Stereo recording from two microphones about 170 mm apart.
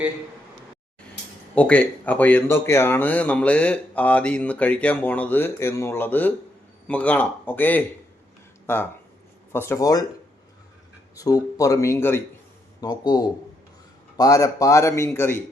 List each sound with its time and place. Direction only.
1.5 s speech: 5° left (ahead or behind)
11.1 s speech: 20° left (ahead or behind)